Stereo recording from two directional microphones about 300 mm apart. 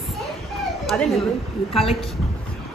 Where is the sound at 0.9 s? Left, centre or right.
Centre.